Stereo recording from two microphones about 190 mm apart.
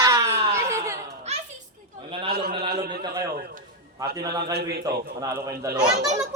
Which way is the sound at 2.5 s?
30° right (ahead or behind).